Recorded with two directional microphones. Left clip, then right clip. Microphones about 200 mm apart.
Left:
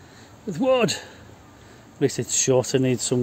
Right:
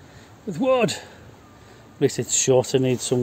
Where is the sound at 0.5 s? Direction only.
5° left (ahead or behind).